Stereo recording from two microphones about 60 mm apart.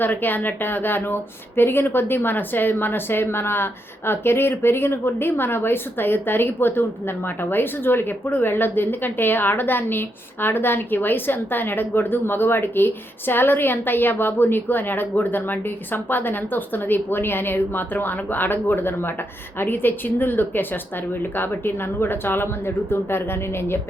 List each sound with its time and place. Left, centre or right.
0.0 s speech: left